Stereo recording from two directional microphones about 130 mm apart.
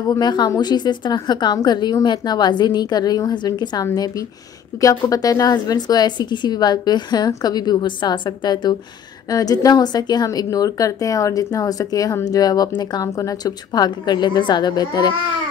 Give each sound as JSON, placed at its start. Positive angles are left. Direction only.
{"t": 0.0, "sound": "a woman's voice", "side_deg": 30}